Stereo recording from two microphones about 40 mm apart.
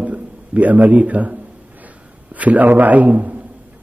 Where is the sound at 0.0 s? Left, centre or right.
Right.